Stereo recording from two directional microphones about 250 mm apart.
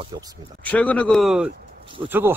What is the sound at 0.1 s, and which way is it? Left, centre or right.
Speech, centre.